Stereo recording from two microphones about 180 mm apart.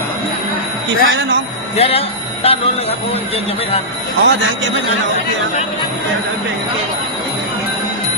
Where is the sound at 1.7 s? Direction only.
30° left (ahead or behind).